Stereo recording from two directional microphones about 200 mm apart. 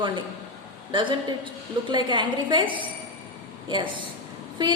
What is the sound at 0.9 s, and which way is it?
A woman's voice, 25° right (ahead or behind).